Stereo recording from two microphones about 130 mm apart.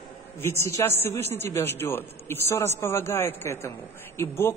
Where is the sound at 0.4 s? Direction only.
20° left (ahead or behind).